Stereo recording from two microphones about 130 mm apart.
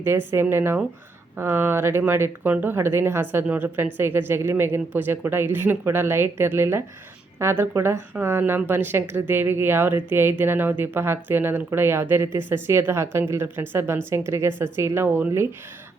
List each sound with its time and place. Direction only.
0.0 s a woman's voice: 20° right (ahead or behind)